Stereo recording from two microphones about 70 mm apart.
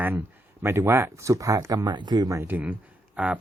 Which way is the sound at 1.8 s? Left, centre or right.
Right.